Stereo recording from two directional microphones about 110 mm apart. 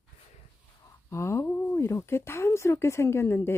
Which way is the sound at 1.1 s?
25° left (ahead or behind).